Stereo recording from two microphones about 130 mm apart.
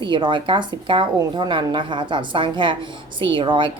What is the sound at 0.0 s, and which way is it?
A woman's voice, 35° right (ahead or behind).